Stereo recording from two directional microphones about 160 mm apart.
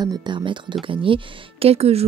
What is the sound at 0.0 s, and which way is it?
Speech, 25° right (ahead or behind).